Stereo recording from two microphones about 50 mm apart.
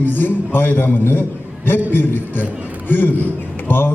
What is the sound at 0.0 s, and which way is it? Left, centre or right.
A man's voice, left.